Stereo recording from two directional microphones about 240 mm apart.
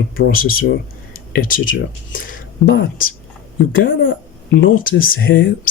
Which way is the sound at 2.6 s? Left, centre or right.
Left.